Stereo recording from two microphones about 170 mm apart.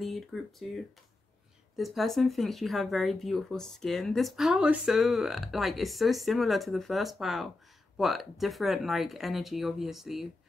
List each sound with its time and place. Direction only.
0.0 s speech: centre (ahead or behind)